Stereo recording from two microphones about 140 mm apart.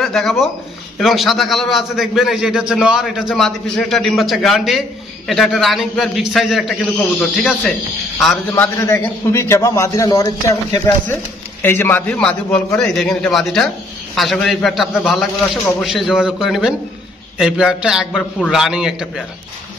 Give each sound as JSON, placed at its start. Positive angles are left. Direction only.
{"t": 0.0, "sound": "a man's voice", "side_deg": 0}
{"t": 8.5, "sound": "a man's voice", "side_deg": 20}
{"t": 11.6, "sound": "a man's voice", "side_deg": 15}